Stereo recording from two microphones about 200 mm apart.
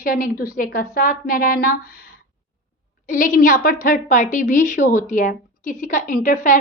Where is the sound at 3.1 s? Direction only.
40° left (ahead or behind).